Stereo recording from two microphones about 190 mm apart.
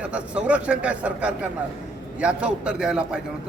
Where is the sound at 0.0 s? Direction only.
5° right (ahead or behind).